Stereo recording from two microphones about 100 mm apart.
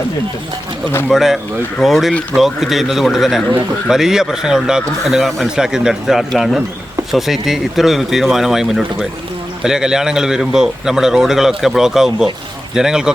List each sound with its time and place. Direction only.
1.1 s a man's voice: 5° right (ahead or behind)